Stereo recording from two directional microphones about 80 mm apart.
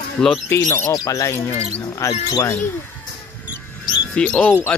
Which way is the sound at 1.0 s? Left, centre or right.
Left.